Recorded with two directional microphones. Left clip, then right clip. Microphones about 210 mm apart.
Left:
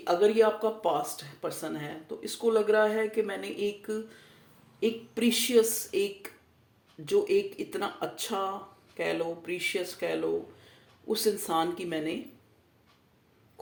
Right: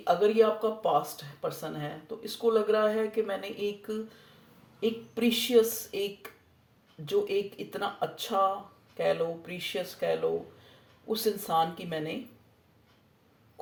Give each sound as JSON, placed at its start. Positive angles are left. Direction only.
{"t": 0.0, "sound": "speech", "side_deg": 30}
{"t": 7.0, "sound": "speech", "side_deg": 30}